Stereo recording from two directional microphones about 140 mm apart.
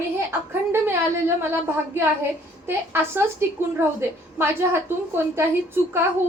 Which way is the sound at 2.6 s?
15° right (ahead or behind).